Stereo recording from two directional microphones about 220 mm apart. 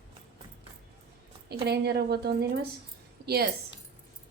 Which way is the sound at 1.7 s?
50° right (ahead or behind).